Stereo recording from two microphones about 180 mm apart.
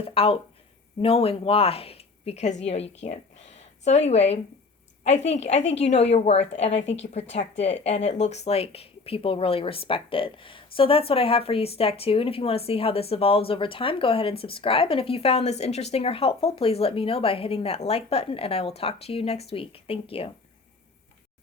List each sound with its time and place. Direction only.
0.0 s speech: 30° left (ahead or behind)